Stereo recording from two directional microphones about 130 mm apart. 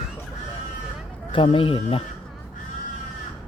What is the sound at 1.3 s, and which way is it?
Speech, 40° left (ahead or behind).